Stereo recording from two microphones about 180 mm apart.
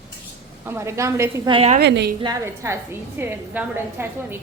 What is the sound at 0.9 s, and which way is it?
Speech, 15° right (ahead or behind).